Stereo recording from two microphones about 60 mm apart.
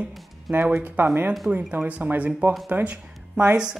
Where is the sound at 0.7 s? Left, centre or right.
Right; by 3.7 s centre.